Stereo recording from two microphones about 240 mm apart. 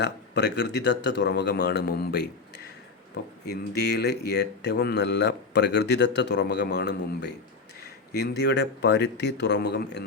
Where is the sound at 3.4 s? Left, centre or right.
Left.